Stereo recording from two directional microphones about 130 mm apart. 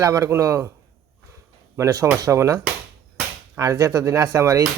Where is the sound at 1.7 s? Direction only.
25° right (ahead or behind).